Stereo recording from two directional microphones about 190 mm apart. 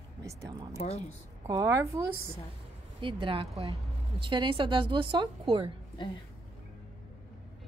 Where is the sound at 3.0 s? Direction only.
25° right (ahead or behind).